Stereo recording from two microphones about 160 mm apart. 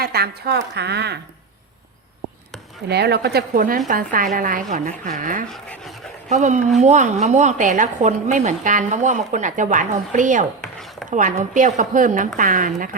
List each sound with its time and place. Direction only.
0.0 s a woman's voice: 75° right (ahead or behind)
2.9 s a woman's voice: 90° right; by 5.5 s 55° right (ahead or behind)
5.5 s speech: 5° left (ahead or behind)
6.2 s a woman's voice: 45° right (ahead or behind)
10.6 s chopping: centre (ahead or behind)
11.1 s a woman's voice: 50° right (ahead or behind)